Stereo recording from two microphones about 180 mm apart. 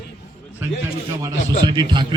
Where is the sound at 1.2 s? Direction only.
25° right (ahead or behind).